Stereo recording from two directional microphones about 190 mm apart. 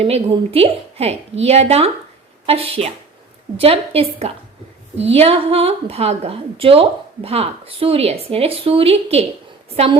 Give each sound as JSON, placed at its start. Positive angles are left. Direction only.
{"t": 0.0, "sound": "a woman's voice", "side_deg": -30}